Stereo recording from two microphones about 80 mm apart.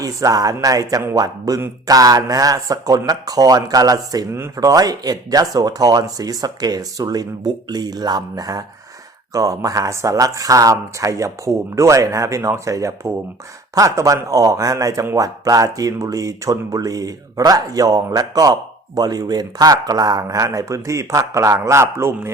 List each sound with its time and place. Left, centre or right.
0.0 s speech: right